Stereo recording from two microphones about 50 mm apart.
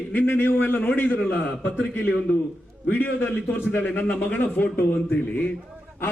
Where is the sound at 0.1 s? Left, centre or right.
Left.